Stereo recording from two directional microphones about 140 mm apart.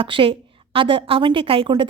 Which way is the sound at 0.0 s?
40° right (ahead or behind).